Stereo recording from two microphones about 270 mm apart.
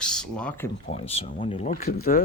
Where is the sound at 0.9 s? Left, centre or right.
Left.